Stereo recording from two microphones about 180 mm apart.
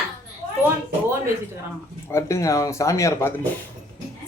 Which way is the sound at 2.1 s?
15° left (ahead or behind).